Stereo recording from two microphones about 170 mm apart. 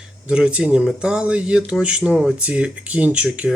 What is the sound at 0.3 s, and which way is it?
Speech, 5° right (ahead or behind).